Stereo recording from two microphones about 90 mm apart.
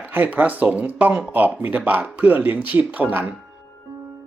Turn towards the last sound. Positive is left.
turn(degrees=-20)  # may be behind; listen again after turning